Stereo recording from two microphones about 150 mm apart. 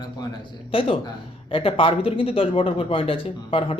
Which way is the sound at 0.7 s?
35° left (ahead or behind).